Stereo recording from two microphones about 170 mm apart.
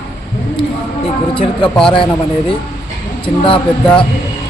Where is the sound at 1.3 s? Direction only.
30° left (ahead or behind).